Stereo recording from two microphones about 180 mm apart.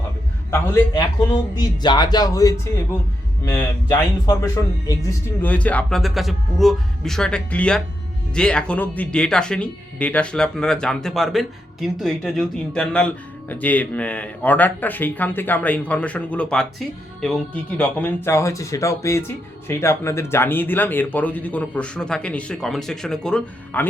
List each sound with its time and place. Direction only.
0.5 s speech: 15° left (ahead or behind)
5.4 s speech: 10° left (ahead or behind)